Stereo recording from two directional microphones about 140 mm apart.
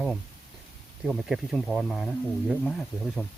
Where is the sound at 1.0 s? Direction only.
Centre (ahead or behind).